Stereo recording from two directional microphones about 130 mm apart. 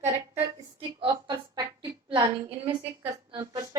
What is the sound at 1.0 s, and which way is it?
Speech, 35° right (ahead or behind).